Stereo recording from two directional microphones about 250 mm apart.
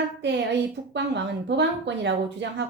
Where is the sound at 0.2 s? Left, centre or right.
Right.